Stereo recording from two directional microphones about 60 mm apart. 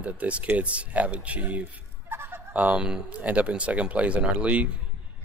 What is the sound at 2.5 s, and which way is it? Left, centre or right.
Speech, right.